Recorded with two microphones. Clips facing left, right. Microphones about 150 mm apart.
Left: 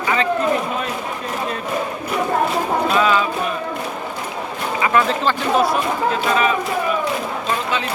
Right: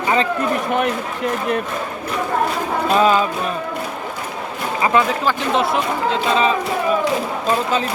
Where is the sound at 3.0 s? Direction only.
40° right (ahead or behind).